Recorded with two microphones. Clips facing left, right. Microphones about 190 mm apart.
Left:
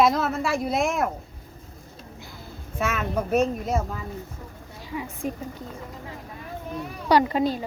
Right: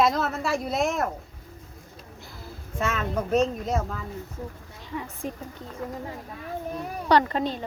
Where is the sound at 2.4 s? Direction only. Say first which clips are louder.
Left 1 dB; 5° left (ahead or behind).